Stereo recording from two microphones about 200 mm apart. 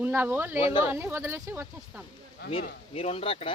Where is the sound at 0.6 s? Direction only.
25° left (ahead or behind).